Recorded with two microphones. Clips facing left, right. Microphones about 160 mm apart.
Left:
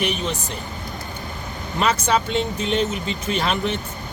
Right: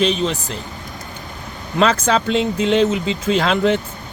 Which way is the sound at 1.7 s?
90° right.